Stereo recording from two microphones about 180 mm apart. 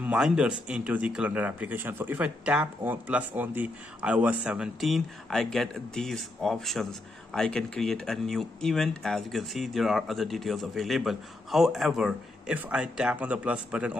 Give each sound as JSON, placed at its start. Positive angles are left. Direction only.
{"t": 0.0, "sound": "speech", "side_deg": -5}